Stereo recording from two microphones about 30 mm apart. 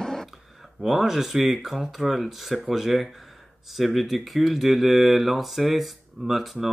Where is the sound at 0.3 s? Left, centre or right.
Centre.